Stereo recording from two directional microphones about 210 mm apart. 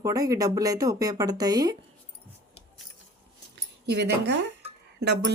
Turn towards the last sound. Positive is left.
turn(degrees=-50)  # may be behind; listen again after turning